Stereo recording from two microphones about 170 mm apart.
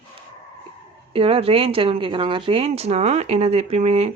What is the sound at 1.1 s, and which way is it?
Speech, 35° right (ahead or behind).